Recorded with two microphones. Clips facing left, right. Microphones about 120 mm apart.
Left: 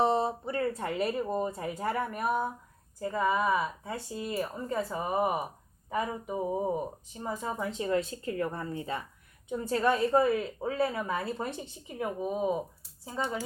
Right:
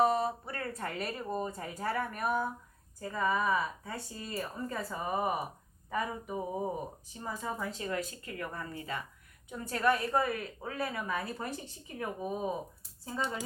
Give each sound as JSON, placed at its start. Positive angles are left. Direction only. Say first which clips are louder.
{"t": 0.0, "sound": "a woman's voice", "louder": "left 2 dB", "side_deg": 25}